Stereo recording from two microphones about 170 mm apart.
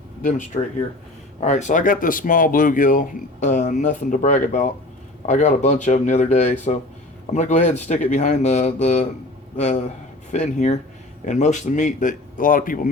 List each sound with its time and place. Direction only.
0.2 s speech: 50° left (ahead or behind)